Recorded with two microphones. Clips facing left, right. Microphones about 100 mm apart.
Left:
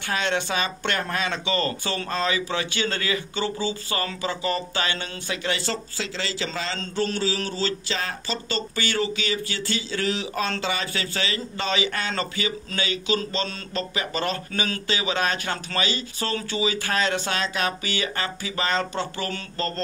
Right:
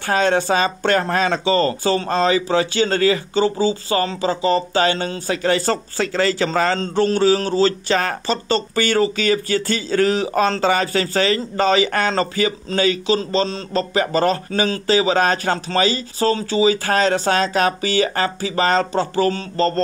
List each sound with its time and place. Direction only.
0.0 s speech: 40° right (ahead or behind)